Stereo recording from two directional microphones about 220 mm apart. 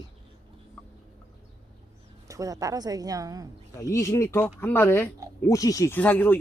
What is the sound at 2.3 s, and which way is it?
A woman's voice, 15° right (ahead or behind).